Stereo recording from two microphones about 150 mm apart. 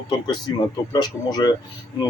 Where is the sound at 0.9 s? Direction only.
30° left (ahead or behind).